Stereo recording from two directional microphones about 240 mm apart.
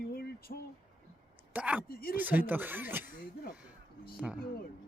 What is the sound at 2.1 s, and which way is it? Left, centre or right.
Speech, centre.